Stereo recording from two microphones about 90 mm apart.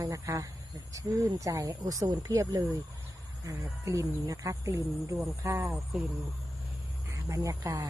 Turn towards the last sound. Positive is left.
turn(degrees=-40)  # may be behind; listen again after turning